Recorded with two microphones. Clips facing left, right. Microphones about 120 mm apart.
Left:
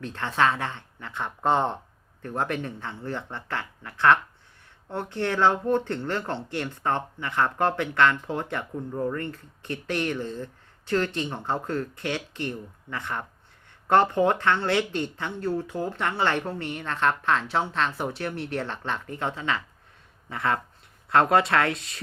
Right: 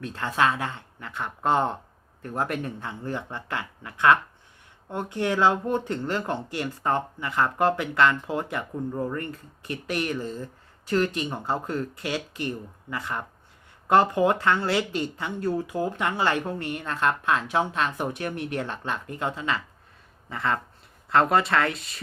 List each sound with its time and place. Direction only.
0.0 s speech: 10° right (ahead or behind)
21.2 s speech: centre (ahead or behind)